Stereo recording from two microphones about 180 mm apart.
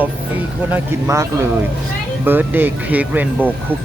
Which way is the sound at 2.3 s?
10° right (ahead or behind).